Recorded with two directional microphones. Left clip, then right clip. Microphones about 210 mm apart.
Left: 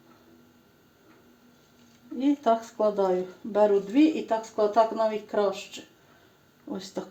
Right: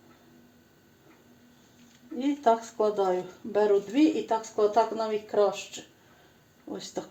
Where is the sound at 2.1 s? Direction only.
20° left (ahead or behind).